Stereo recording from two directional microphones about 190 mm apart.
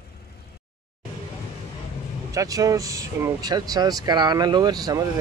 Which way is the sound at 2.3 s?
20° right (ahead or behind).